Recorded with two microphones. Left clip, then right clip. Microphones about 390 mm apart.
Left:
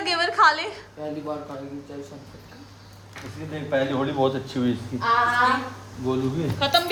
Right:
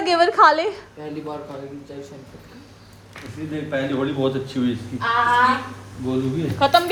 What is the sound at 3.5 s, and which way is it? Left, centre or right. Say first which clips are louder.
A man's voice: even; left.